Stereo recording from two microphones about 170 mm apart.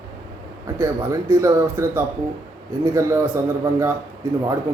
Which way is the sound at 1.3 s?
15° right (ahead or behind).